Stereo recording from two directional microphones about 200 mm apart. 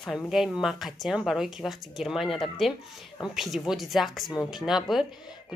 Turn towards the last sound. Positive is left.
turn(degrees=0)  # may be behind; listen again after turning